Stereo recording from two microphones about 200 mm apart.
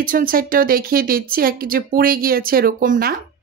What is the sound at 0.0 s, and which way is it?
Speech, 45° right (ahead or behind).